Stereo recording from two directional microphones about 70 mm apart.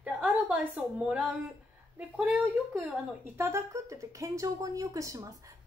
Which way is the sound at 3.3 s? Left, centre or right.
Right.